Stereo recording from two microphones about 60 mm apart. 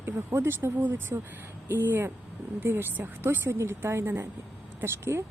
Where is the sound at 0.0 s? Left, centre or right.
Right.